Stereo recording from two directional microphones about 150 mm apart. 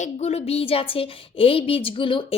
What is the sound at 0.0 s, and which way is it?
A woman's voice, 45° left (ahead or behind).